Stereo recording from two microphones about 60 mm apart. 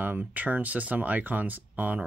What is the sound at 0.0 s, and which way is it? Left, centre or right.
Speech, right.